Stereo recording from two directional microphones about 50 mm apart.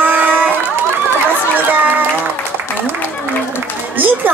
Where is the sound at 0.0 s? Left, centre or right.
Right.